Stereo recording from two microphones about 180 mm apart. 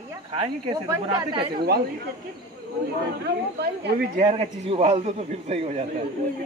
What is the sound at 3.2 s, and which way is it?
Speech, 65° right (ahead or behind).